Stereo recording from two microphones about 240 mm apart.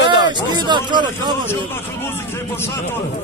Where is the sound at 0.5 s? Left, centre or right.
Centre.